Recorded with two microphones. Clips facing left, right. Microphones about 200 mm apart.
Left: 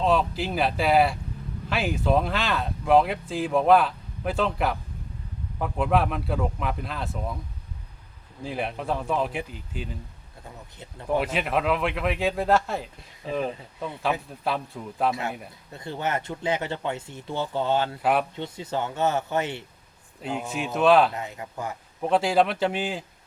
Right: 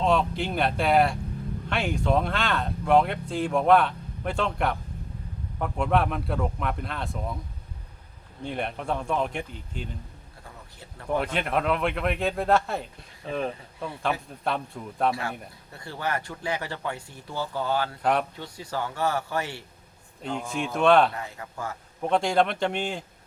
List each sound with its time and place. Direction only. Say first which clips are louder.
0.0 s speech: left 1 dB; centre (ahead or behind)
8.4 s speech: left 1 dB; centre (ahead or behind)
10.8 s speech: left 2 dB; 20° left (ahead or behind)
11.1 s speech: left 1 dB; 5° left (ahead or behind)
14.3 s speech: left 1 dB; 5° left (ahead or behind)
15.7 s speech: left 2 dB; 20° left (ahead or behind)
18.0 s speech: even; 5° left (ahead or behind)
18.3 s speech: left 3 dB; 20° left (ahead or behind)
20.2 s speech: even; 5° left (ahead or behind)
21.1 s speech: left 2 dB; 20° left (ahead or behind)
22.0 s speech: left 1 dB; 5° left (ahead or behind)